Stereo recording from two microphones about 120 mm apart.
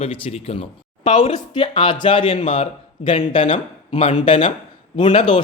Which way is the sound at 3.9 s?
80° left.